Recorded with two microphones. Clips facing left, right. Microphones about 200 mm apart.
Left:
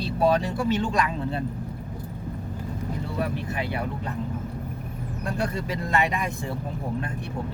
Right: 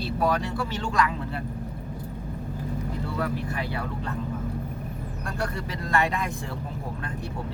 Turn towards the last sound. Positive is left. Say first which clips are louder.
# left 1 dB
turn(degrees=15)  # may be behind; listen again after turning